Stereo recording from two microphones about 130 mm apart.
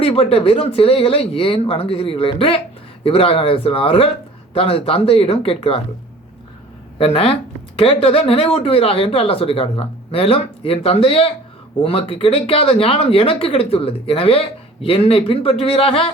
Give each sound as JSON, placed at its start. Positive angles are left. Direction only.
{"t": 0.0, "sound": "speech", "side_deg": 45}
{"t": 7.0, "sound": "speech", "side_deg": 45}